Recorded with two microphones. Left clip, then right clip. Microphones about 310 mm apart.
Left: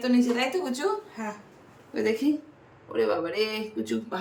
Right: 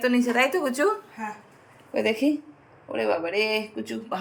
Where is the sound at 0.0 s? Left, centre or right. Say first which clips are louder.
Right 3 dB; centre.